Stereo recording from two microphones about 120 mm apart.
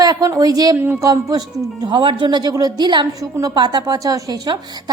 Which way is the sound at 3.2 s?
30° right (ahead or behind).